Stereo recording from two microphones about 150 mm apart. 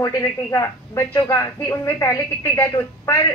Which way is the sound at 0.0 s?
20° left (ahead or behind).